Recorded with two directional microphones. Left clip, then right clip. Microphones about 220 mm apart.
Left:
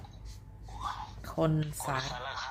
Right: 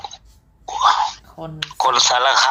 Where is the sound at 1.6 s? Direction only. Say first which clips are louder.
Right 19 dB; 50° right (ahead or behind).